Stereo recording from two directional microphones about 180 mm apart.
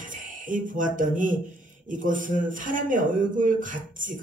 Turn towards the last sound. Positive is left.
turn(degrees=-45)  # may be behind; listen again after turning